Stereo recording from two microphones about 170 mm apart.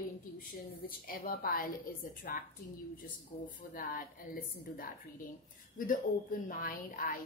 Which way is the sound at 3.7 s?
55° left (ahead or behind).